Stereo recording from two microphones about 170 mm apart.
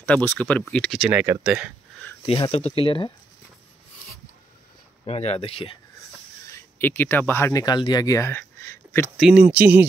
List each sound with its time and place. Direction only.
0.0 s speech: 10° left (ahead or behind)
1.1 s speech: 10° right (ahead or behind)
2.2 s speech: 30° left (ahead or behind)
5.0 s speech: 40° left (ahead or behind)
6.5 s speech: 10° left (ahead or behind)
9.2 s speech: 5° right (ahead or behind)